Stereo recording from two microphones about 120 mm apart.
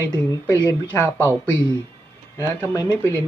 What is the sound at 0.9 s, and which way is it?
Speech, 20° right (ahead or behind).